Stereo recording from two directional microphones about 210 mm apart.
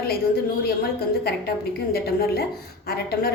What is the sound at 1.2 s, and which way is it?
A woman's voice, 50° left (ahead or behind).